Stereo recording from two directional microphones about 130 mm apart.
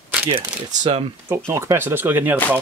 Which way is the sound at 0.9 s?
45° right (ahead or behind).